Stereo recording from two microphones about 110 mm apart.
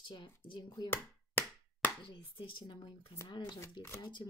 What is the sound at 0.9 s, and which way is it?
Chop, 20° left (ahead or behind).